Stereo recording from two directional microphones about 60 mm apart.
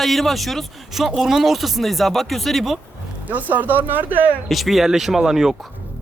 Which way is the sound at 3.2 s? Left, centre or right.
Right.